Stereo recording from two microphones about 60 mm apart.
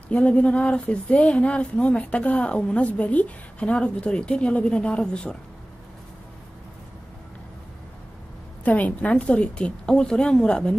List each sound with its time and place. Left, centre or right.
0.1 s speech: left
8.6 s a woman's voice: left